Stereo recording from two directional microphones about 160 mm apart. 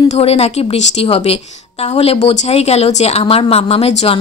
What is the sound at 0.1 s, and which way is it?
A woman's voice, 40° left (ahead or behind).